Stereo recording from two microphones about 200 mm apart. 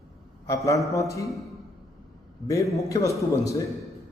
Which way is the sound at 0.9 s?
15° left (ahead or behind).